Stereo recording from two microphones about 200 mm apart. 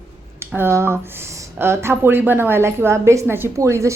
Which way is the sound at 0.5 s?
10° right (ahead or behind).